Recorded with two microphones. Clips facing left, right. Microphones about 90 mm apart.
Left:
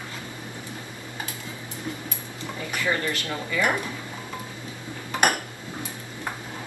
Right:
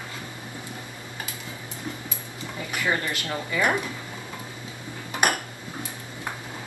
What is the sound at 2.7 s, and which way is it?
Speech, 20° right (ahead or behind).